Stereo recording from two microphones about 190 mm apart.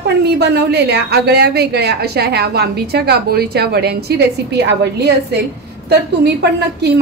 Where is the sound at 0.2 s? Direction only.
60° right (ahead or behind).